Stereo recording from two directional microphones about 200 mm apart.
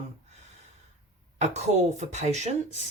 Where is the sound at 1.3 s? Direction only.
35° right (ahead or behind).